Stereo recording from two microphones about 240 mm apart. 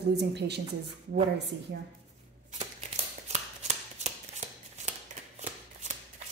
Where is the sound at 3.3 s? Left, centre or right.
Right.